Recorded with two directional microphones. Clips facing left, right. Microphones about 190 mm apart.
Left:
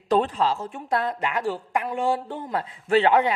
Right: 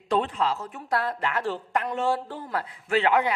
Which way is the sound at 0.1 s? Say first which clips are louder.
Left 3 dB; 35° left (ahead or behind).